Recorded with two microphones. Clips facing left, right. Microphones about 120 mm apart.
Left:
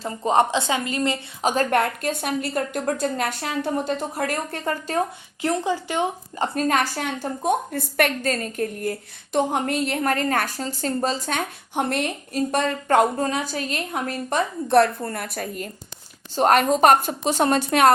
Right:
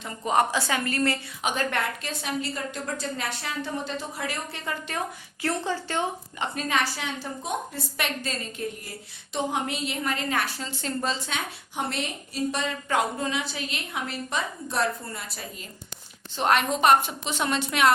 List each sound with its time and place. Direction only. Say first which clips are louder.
0.0 s a woman's voice: left 4 dB; 30° left (ahead or behind)
1.4 s a woman's voice: left 9 dB; 35° left (ahead or behind)
1.7 s a woman's voice: left 8 dB; 55° left (ahead or behind)
5.4 s a woman's voice: left 5 dB; 15° left (ahead or behind)
6.4 s a woman's voice: left 6 dB; 40° left (ahead or behind)
16.3 s a woman's voice: left 6 dB; 45° left (ahead or behind)